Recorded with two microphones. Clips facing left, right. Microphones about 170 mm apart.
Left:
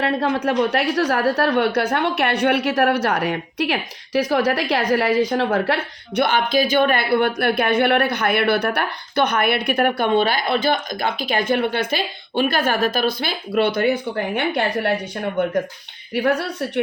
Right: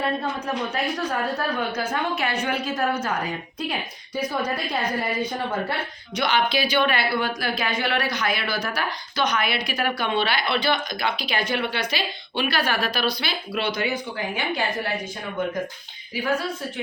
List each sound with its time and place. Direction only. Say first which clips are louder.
0.0 s a woman's voice: left 6 dB; 75° left (ahead or behind)
6.1 s a woman's voice: left 5 dB; 50° left (ahead or behind); by 16.8 s 70° left (ahead or behind)